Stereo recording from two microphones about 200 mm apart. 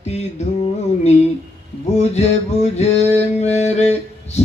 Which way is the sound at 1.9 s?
35° left (ahead or behind).